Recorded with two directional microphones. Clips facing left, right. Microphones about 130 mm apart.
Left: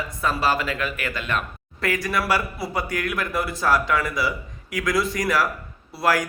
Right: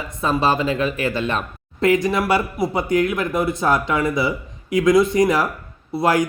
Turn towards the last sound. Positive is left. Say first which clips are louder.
# right 4 dB
turn(degrees=-20)  # may be behind; listen again after turning